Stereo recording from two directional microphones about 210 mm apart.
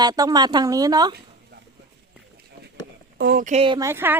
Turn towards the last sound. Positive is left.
turn(degrees=-10)  # may be behind; listen again after turning